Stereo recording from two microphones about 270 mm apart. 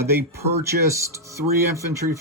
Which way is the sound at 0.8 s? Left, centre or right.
Centre.